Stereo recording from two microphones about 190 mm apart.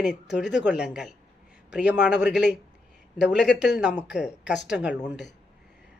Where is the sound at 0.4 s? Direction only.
65° left (ahead or behind).